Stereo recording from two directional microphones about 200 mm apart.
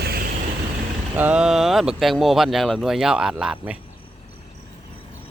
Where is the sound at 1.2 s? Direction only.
5° right (ahead or behind).